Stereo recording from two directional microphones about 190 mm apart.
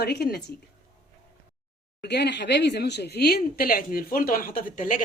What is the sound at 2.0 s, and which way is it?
Speech, 60° left (ahead or behind).